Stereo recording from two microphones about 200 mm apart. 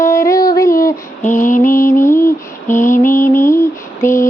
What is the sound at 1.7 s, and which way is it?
Mantra, 15° left (ahead or behind).